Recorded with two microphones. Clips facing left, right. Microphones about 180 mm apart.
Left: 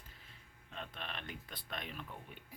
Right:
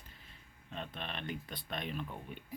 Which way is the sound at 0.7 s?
5° left (ahead or behind).